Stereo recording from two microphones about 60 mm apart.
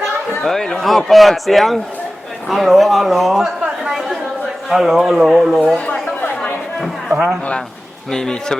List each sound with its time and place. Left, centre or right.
0.4 s a man's voice: centre
5.7 s chatter: centre
8.1 s speech: centre